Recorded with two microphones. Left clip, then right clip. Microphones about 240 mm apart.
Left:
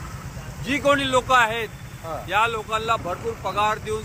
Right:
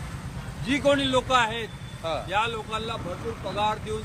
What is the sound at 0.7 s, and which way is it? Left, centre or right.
Speech, centre.